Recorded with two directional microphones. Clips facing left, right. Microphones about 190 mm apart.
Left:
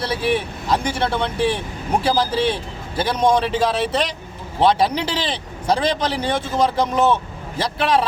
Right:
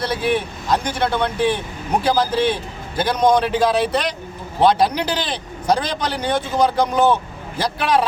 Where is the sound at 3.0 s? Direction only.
5° left (ahead or behind).